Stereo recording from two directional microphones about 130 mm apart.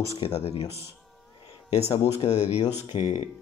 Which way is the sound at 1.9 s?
50° left (ahead or behind).